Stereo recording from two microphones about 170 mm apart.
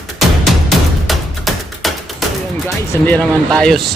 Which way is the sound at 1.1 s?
Centre (ahead or behind).